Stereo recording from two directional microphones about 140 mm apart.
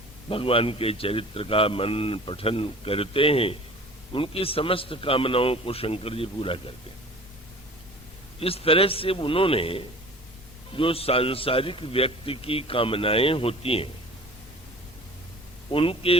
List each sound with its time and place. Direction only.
0.3 s a man's voice: 40° left (ahead or behind)
8.4 s a man's voice: 45° left (ahead or behind)
15.7 s a man's voice: 40° left (ahead or behind)